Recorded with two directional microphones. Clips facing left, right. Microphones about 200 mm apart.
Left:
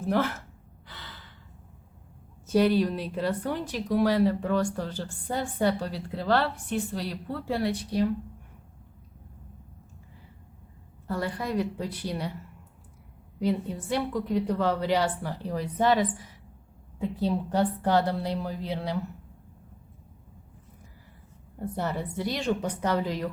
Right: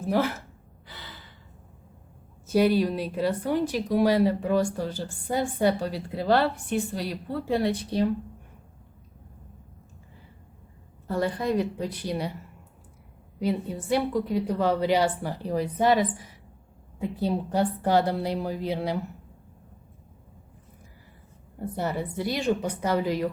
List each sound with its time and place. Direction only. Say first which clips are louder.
0.1 s a woman's voice: right 2 dB; 10° right (ahead or behind)
0.9 s gasp: right 1 dB; 10° right (ahead or behind)
2.6 s a woman's voice: right 1 dB; 10° right (ahead or behind)
7.6 s speech: right 2 dB; 25° right (ahead or behind)
11.2 s a woman's voice: right 4 dB; 20° right (ahead or behind)
13.4 s a woman's voice: even; 10° right (ahead or behind)
17.2 s a woman's voice: right 1 dB; 10° right (ahead or behind)
21.8 s a woman's voice: right 2 dB; 10° right (ahead or behind)